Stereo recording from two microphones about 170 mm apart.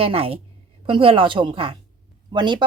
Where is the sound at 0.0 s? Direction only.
35° right (ahead or behind).